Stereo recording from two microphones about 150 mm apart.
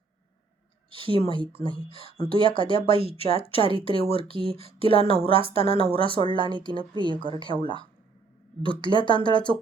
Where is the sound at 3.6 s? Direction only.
35° right (ahead or behind).